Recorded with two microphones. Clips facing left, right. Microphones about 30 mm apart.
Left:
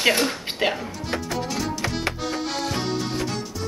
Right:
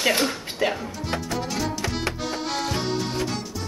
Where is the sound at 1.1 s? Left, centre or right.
Centre.